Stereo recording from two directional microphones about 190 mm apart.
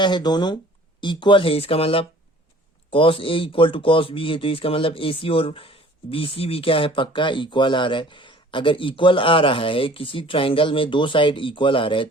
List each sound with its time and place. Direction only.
0.0 s speech: 20° left (ahead or behind)